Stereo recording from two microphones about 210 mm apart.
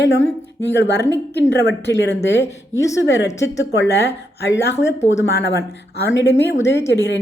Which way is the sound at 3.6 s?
60° left (ahead or behind).